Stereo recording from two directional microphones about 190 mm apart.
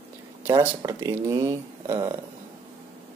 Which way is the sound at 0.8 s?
15° right (ahead or behind).